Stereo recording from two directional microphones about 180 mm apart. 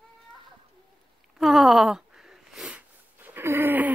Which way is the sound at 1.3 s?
Centre (ahead or behind).